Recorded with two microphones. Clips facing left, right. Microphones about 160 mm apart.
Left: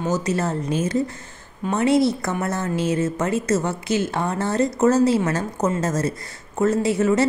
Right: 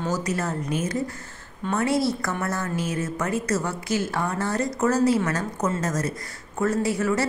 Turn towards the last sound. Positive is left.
turn(degrees=20)  # may be behind; listen again after turning